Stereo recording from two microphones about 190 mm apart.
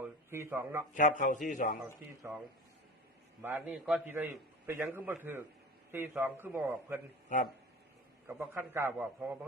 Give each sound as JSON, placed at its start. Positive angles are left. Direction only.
{"t": 0.0, "sound": "speech", "side_deg": -15}
{"t": 0.9, "sound": "a man's voice", "side_deg": 40}
{"t": 3.4, "sound": "a man's voice", "side_deg": -10}
{"t": 8.3, "sound": "a man's voice", "side_deg": -10}